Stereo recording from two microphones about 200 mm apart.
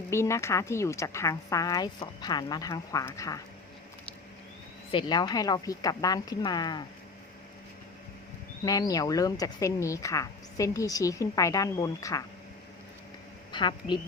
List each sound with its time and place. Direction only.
0.1 s speech: 15° left (ahead or behind)
4.9 s a woman's voice: 25° left (ahead or behind)
8.6 s speech: 20° left (ahead or behind)
13.5 s a woman's voice: 25° left (ahead or behind)